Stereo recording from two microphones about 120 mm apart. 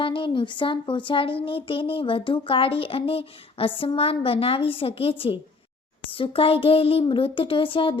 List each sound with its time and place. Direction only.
0.0 s a child's voice: 45° left (ahead or behind)